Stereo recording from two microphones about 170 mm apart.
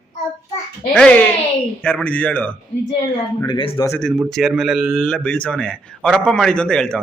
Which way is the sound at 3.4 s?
30° left (ahead or behind).